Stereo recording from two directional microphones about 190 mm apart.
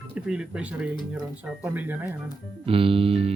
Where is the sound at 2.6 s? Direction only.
30° right (ahead or behind).